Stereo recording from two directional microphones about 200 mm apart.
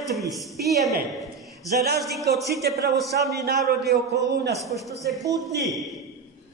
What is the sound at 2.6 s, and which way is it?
A man's voice, 55° right (ahead or behind).